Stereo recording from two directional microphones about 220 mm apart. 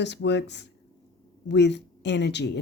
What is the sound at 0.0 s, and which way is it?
Speech, 50° left (ahead or behind).